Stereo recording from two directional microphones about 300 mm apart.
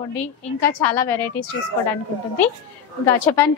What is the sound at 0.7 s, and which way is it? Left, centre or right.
Speech, centre.